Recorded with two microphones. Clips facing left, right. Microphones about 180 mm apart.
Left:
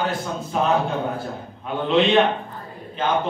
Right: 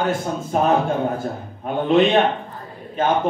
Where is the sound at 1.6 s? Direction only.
50° right (ahead or behind).